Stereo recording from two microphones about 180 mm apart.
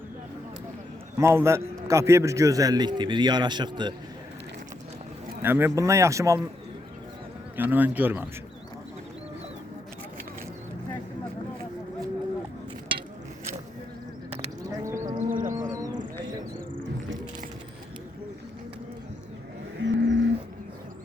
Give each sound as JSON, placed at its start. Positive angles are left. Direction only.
{"t": 1.2, "sound": "a man's voice", "side_deg": -15}
{"t": 5.4, "sound": "a man's voice", "side_deg": -10}
{"t": 7.5, "sound": "a man's voice", "side_deg": -10}
{"t": 14.8, "sound": "livestock", "side_deg": -15}
{"t": 15.3, "sound": "livestock", "side_deg": -50}
{"t": 15.7, "sound": "livestock", "side_deg": -20}
{"t": 19.8, "sound": "livestock", "side_deg": -90}